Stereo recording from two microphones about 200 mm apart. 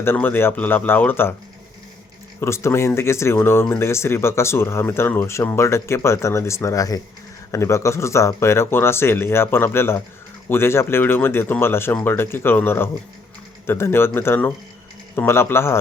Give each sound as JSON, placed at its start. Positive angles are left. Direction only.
{"t": 0.0, "sound": "speech", "side_deg": 10}
{"t": 2.4, "sound": "speech", "side_deg": 15}